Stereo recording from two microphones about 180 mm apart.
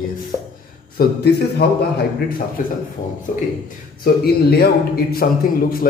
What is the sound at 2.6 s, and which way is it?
Speech, 50° left (ahead or behind).